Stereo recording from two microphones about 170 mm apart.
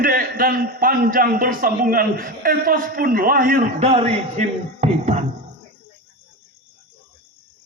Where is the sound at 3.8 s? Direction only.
35° right (ahead or behind).